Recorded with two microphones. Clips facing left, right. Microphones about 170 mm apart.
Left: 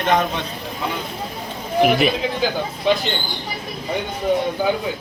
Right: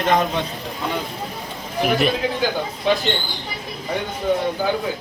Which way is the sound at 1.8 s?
Centre (ahead or behind).